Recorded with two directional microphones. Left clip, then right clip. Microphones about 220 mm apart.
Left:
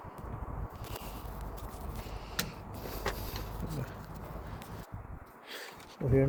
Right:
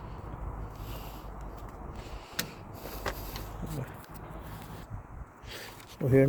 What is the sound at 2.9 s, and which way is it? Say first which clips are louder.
Vehicle: even; 20° right (ahead or behind).